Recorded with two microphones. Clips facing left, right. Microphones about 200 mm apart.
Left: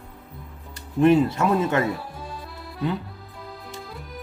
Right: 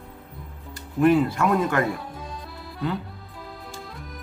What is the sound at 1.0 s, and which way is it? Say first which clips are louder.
Speech: left 1 dB; 25° left (ahead or behind).